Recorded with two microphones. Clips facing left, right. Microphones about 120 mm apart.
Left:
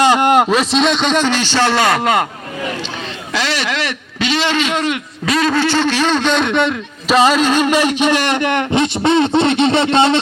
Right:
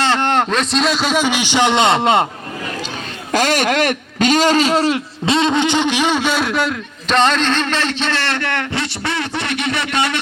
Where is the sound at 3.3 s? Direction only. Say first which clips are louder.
Right 4 dB; 45° right (ahead or behind).